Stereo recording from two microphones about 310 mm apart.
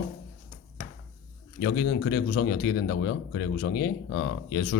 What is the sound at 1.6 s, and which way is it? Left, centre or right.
A man's voice, left.